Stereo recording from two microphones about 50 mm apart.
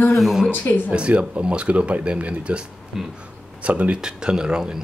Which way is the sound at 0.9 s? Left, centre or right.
Right.